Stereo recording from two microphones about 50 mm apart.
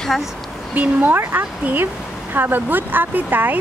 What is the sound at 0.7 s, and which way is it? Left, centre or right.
Speech, right.